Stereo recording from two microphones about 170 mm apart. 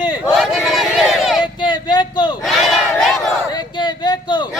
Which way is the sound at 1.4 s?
25° left (ahead or behind).